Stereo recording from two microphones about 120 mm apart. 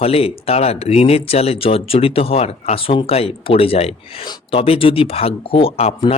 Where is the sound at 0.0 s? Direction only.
55° left (ahead or behind).